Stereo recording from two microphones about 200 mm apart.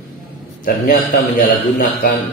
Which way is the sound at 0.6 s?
45° left (ahead or behind).